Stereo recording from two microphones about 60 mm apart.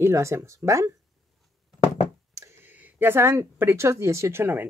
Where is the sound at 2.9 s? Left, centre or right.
Right.